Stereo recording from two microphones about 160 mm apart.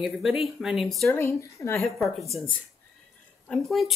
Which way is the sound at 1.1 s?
15° left (ahead or behind).